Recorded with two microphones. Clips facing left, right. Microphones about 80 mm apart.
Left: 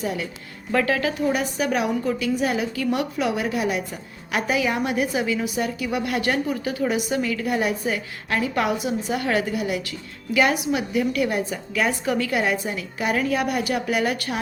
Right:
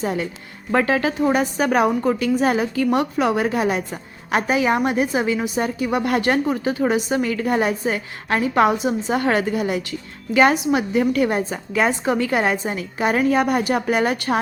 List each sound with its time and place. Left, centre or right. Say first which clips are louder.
0.0 s a woman's voice: right 4 dB; right